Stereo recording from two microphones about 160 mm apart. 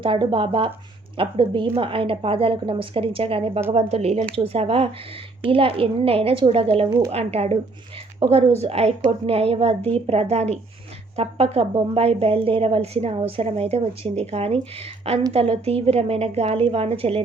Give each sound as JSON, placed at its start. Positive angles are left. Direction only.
{"t": 0.0, "sound": "a woman's voice", "side_deg": -30}